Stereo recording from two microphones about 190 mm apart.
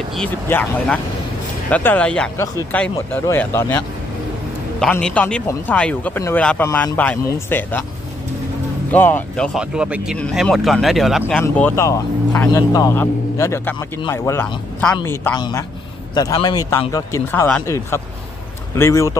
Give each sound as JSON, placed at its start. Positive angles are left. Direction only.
{"t": 0.1, "sound": "speech", "side_deg": 5}
{"t": 8.9, "sound": "a man's voice", "side_deg": 10}
{"t": 11.4, "sound": "speech", "side_deg": 10}